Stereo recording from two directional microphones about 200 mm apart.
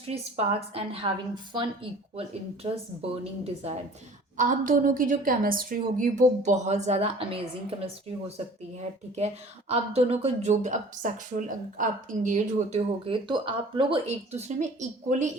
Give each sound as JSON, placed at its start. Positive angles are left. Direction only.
{"t": 0.1, "sound": "a woman's voice", "side_deg": -30}
{"t": 9.1, "sound": "a woman's voice", "side_deg": -35}